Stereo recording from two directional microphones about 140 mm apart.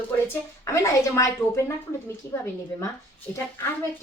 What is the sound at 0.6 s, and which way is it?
A woman's voice, 20° left (ahead or behind).